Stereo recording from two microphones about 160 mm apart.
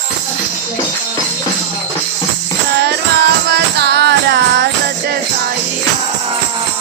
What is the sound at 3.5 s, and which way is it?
Music, 90° right.